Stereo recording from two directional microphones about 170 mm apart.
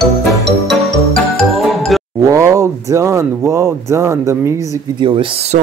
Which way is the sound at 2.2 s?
20° right (ahead or behind).